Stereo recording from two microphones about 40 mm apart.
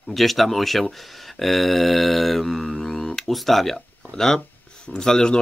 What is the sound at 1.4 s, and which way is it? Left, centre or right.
Mantra, centre.